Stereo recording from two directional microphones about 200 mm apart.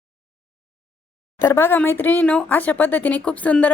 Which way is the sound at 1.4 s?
10° left (ahead or behind).